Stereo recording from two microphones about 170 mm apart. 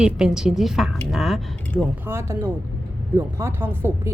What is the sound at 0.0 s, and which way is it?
A woman's voice, 5° right (ahead or behind).